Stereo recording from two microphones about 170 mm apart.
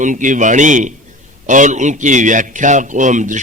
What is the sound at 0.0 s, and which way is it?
A man's voice, 50° right (ahead or behind).